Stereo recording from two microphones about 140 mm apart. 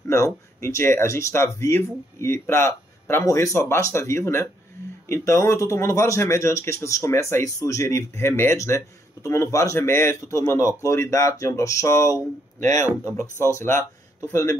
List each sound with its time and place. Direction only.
0.1 s speech: 20° left (ahead or behind)
12.5 s speech: 60° right (ahead or behind)
13.1 s speech: 20° left (ahead or behind)